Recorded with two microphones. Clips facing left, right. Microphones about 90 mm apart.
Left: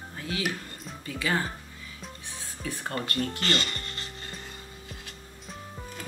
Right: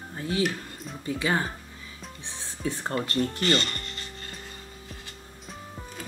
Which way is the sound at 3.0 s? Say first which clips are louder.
Right 3 dB; 30° right (ahead or behind).